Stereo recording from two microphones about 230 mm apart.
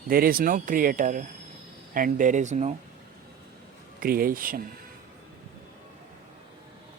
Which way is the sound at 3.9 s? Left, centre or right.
Right.